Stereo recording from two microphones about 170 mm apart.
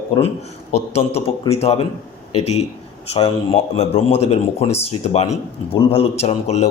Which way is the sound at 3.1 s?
35° left (ahead or behind).